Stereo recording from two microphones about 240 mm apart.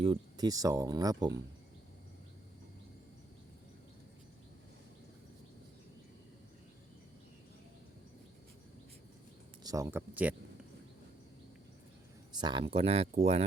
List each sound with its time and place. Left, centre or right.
0.0 s speech: centre
9.6 s speech: centre
12.3 s speech: centre